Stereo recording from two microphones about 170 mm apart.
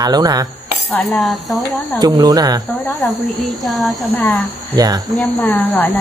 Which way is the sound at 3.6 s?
Centre (ahead or behind).